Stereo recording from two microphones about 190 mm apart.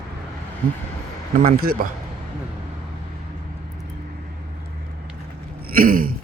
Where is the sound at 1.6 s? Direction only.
50° right (ahead or behind).